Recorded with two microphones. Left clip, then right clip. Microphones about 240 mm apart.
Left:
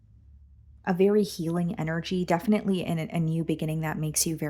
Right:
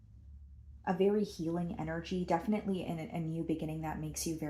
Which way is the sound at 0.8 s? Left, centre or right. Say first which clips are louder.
Left 8 dB; left.